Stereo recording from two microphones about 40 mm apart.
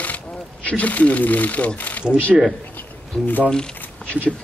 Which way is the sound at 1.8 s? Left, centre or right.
Left.